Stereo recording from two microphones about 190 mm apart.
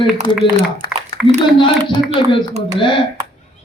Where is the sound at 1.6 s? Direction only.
25° left (ahead or behind).